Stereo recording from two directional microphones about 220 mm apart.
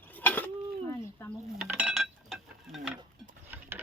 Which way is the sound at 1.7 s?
5° right (ahead or behind).